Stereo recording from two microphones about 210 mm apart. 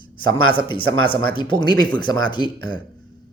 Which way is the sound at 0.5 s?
25° left (ahead or behind).